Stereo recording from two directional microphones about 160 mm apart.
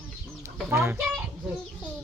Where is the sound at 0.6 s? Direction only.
15° right (ahead or behind).